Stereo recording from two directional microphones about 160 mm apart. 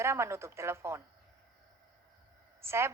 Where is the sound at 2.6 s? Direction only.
15° right (ahead or behind).